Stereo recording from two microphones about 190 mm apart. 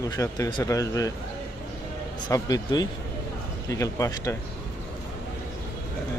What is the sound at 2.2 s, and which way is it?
A man's voice, 20° left (ahead or behind).